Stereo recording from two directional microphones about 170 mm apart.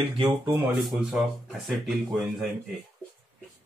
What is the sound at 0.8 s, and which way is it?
Speech, 5° right (ahead or behind).